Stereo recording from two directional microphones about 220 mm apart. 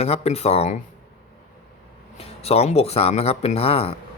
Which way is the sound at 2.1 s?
30° left (ahead or behind).